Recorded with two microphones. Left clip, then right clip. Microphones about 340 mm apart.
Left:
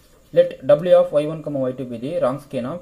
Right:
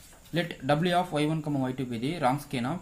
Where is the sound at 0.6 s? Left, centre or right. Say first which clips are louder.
Left 11 dB; centre.